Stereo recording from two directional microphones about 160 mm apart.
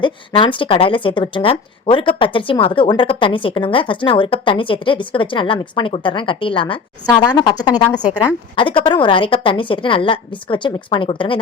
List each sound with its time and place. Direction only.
0.0 s a woman's voice: 30° left (ahead or behind)